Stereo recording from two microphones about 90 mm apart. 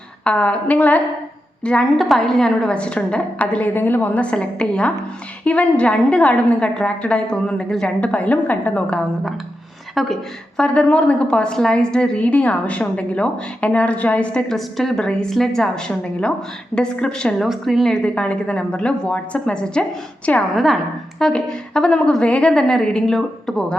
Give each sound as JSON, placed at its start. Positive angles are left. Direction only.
{"t": 0.3, "sound": "a woman's voice", "side_deg": 15}
{"t": 9.9, "sound": "a woman's voice", "side_deg": 0}
{"t": 10.6, "sound": "a woman's voice", "side_deg": 15}
{"t": 17.4, "sound": "a woman's voice", "side_deg": 0}